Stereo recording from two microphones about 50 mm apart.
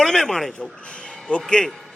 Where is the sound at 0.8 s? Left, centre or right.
Left.